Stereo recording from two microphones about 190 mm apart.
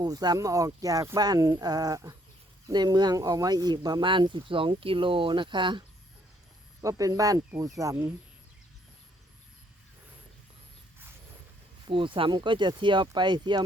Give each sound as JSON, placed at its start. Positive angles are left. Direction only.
{"t": 0.0, "sound": "speech", "side_deg": -20}
{"t": 6.8, "sound": "speech", "side_deg": -20}
{"t": 11.9, "sound": "speech", "side_deg": -25}